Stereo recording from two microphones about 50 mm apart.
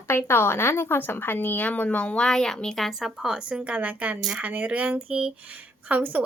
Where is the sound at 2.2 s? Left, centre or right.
Centre.